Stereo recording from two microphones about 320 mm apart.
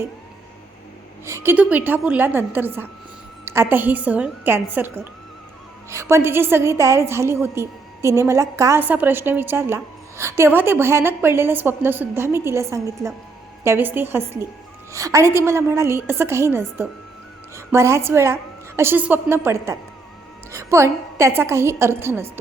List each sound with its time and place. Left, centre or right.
1.2 s a woman's voice: centre